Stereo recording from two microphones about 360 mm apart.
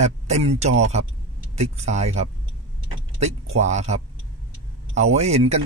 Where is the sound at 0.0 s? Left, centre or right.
Centre.